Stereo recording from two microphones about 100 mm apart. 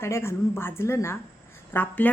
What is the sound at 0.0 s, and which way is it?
A woman's voice, 25° left (ahead or behind).